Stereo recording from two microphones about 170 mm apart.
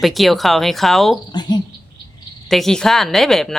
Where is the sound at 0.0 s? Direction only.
Centre (ahead or behind).